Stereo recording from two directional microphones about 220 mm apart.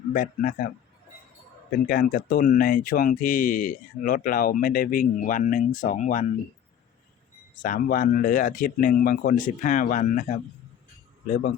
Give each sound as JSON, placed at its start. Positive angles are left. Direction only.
{"t": 0.1, "sound": "speech", "side_deg": 40}
{"t": 1.9, "sound": "speech", "side_deg": 40}
{"t": 7.5, "sound": "speech", "side_deg": 40}